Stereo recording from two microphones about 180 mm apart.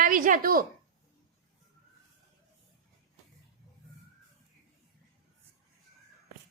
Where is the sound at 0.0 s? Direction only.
50° right (ahead or behind).